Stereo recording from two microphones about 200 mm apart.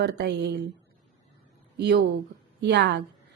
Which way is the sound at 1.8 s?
55° right (ahead or behind).